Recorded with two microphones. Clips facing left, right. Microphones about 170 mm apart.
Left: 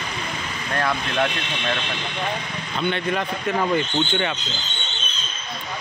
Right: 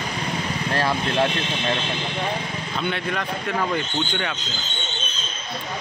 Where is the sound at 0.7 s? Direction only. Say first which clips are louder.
Right 1 dB; 30° right (ahead or behind).